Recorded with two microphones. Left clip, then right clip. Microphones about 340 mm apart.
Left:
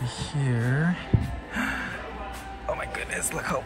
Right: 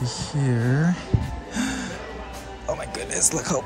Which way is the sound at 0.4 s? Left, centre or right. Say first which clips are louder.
Right 3 dB; centre.